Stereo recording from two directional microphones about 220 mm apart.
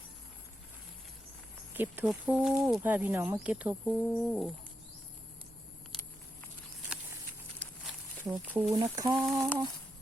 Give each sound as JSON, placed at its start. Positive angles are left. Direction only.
{"t": 1.7, "sound": "speech", "side_deg": -10}
{"t": 8.3, "sound": "speech", "side_deg": -10}
{"t": 9.1, "sound": "speech", "side_deg": 0}